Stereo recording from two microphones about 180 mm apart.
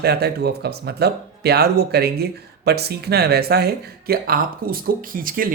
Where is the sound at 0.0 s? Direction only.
65° right (ahead or behind).